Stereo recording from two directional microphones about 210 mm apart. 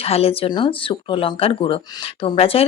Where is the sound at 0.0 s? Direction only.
30° left (ahead or behind).